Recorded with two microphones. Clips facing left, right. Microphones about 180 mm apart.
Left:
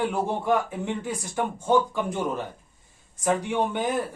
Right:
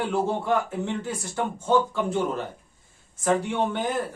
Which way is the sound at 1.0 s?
15° left (ahead or behind).